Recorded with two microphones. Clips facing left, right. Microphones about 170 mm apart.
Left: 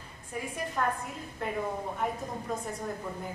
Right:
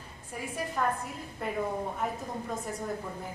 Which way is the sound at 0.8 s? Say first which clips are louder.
Even; centre (ahead or behind).